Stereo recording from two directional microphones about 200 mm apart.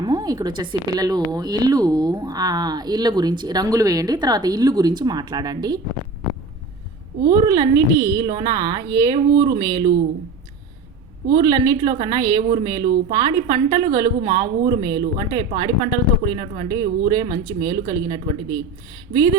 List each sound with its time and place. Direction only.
0.0 s speech: 20° right (ahead or behind)
7.3 s speech: 20° right (ahead or behind)
11.3 s speech: 20° right (ahead or behind)